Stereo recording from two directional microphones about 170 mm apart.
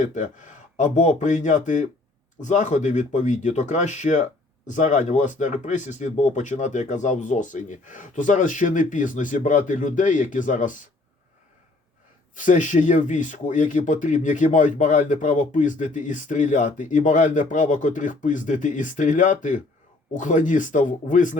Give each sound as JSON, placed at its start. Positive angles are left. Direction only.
{"t": 0.0, "sound": "speech", "side_deg": 45}
{"t": 12.4, "sound": "speech", "side_deg": 50}